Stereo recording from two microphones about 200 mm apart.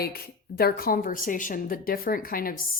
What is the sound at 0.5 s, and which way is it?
Speech, 50° left (ahead or behind).